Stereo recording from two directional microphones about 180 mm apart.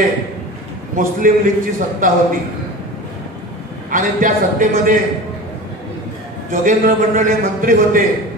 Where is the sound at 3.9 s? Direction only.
45° right (ahead or behind).